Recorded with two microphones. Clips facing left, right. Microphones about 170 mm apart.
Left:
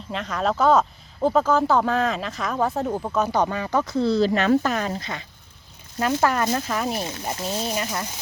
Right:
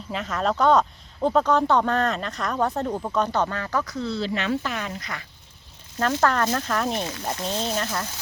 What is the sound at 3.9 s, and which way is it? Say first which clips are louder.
Speech: left 7 dB; 35° left (ahead or behind).